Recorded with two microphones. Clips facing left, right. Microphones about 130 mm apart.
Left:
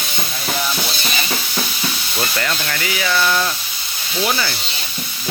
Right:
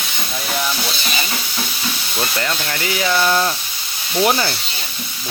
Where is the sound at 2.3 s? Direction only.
20° right (ahead or behind).